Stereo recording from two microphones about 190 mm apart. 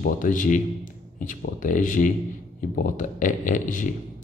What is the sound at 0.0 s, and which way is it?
Speech, 45° left (ahead or behind).